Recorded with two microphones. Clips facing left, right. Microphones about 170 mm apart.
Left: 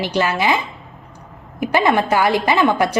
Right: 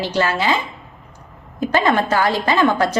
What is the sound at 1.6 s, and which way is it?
A woman's voice, 15° left (ahead or behind).